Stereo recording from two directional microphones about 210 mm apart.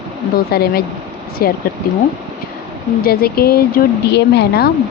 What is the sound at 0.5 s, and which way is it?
Speech, 45° left (ahead or behind).